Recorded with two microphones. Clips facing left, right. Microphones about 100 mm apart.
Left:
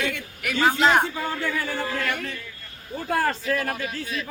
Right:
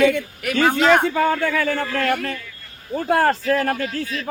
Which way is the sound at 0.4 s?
55° right (ahead or behind).